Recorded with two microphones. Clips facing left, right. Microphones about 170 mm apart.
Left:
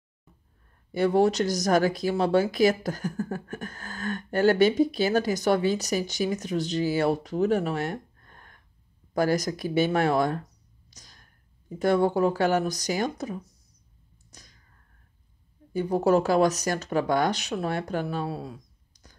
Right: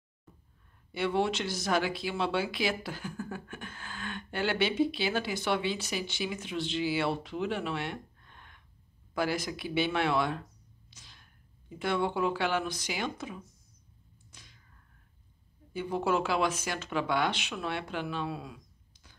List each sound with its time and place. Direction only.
0.9 s speech: 40° left (ahead or behind)
14.3 s a sound: 40° left (ahead or behind)
15.7 s speech: 40° left (ahead or behind)